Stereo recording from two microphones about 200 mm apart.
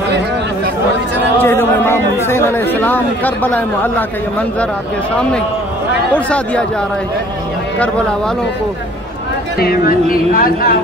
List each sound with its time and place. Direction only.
1.4 s music: 10° left (ahead or behind)
2.2 s speech: 10° left (ahead or behind)
6.1 s speech: 5° left (ahead or behind)
9.6 s speech: 50° left (ahead or behind)